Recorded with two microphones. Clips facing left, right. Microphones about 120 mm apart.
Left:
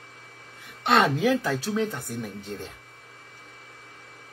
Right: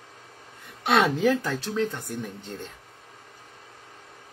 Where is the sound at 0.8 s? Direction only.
Centre (ahead or behind).